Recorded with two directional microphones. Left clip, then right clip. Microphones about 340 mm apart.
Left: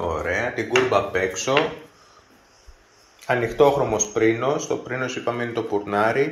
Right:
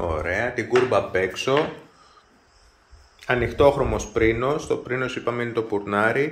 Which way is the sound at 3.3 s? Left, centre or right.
Centre.